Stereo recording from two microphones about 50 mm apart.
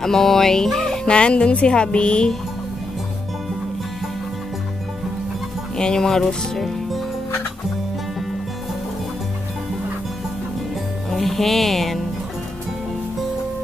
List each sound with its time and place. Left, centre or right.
0.0 s speech: centre
5.8 s speech: centre
11.1 s speech: centre